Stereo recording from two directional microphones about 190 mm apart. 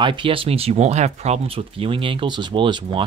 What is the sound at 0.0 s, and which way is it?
Speech, 25° right (ahead or behind).